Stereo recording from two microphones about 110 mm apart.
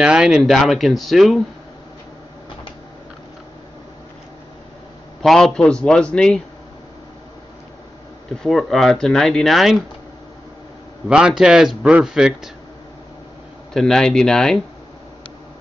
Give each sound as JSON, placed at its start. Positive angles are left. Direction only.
{"t": 0.0, "sound": "speech", "side_deg": -5}
{"t": 5.2, "sound": "a man's voice", "side_deg": 5}
{"t": 8.4, "sound": "speech", "side_deg": 0}
{"t": 11.1, "sound": "a man's voice", "side_deg": -10}
{"t": 13.7, "sound": "speech", "side_deg": 5}